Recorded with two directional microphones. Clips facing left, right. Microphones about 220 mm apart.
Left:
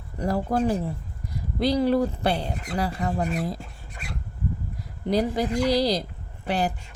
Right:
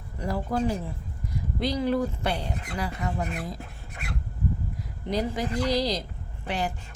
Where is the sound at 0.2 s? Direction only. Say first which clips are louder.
Left 4 dB; 40° left (ahead or behind).